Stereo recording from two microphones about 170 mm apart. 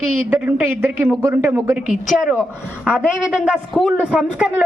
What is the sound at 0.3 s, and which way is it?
A woman's voice, 10° right (ahead or behind).